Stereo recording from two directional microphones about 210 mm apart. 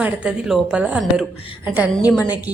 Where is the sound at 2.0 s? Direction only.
20° left (ahead or behind).